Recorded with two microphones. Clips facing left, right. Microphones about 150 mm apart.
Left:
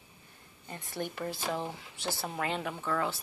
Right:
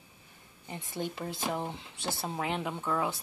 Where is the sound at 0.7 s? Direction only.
20° right (ahead or behind).